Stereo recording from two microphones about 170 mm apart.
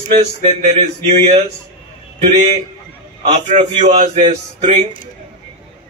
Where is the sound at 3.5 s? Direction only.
45° right (ahead or behind).